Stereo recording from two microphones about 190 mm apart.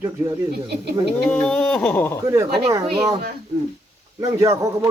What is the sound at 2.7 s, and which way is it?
Speech, 15° right (ahead or behind).